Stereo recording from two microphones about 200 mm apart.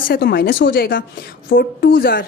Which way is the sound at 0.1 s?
50° left (ahead or behind).